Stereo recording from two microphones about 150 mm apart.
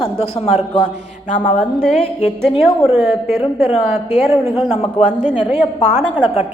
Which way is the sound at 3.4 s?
40° left (ahead or behind).